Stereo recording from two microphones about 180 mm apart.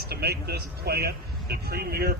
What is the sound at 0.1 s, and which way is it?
Speech, 60° right (ahead or behind).